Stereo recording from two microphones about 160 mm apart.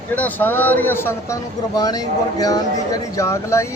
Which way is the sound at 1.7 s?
25° left (ahead or behind).